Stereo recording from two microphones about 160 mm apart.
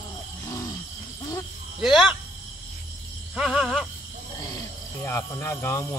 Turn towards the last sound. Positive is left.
turn(degrees=15)  # may be behind; listen again after turning